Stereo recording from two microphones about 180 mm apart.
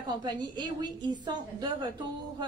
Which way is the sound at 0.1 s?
20° right (ahead or behind).